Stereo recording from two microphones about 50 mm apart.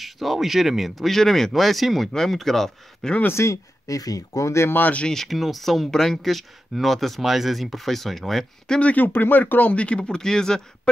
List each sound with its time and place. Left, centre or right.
0.0 s speech: centre
3.4 s speech: left
4.3 s speech: left
4.6 s speech: left
5.0 s speech: centre
8.6 s speech: centre
8.9 s speech: left; by 10.6 s centre